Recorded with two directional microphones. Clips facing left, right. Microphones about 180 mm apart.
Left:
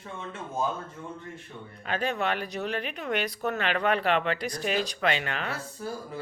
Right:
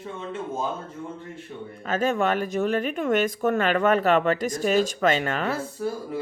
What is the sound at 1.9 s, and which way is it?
Speech, 45° right (ahead or behind).